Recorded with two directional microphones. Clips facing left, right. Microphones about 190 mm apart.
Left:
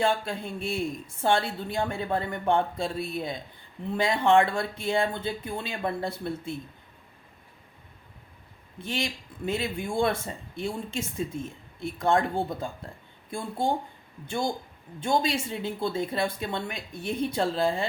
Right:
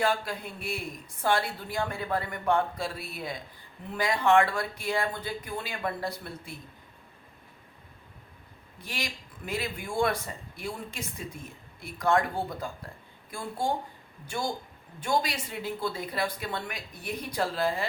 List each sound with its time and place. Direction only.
0.0 s speech: 25° left (ahead or behind)
8.8 s speech: 25° left (ahead or behind)
14.3 s speech: 25° left (ahead or behind)